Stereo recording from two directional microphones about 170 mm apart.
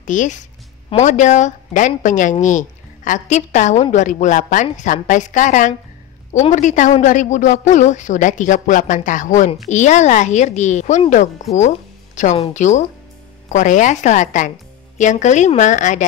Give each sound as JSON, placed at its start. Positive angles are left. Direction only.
{"t": 0.0, "sound": "a woman's voice", "side_deg": 45}